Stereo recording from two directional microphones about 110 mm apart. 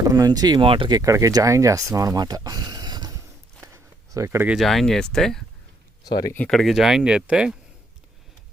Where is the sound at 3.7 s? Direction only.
25° right (ahead or behind).